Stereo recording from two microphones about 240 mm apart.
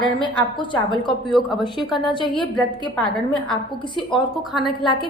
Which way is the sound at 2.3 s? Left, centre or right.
Centre.